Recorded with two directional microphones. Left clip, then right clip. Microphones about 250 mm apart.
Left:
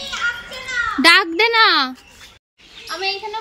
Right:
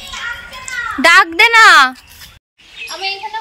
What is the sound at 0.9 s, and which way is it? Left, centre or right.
Speech, centre.